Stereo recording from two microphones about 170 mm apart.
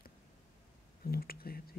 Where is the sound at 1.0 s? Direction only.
60° left (ahead or behind).